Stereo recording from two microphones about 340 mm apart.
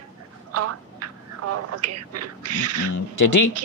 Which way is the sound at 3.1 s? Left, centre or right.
Left.